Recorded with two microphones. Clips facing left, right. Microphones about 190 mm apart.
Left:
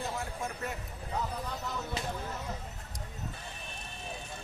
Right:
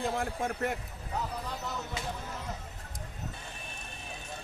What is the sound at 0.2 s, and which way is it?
Speech, 55° right (ahead or behind).